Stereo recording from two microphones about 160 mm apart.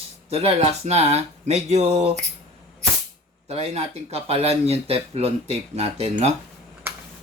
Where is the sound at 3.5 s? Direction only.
40° right (ahead or behind).